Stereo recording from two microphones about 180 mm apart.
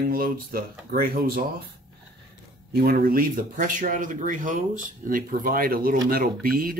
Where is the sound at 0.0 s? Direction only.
55° right (ahead or behind).